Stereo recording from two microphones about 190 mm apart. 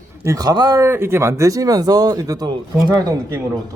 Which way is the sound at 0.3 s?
20° right (ahead or behind).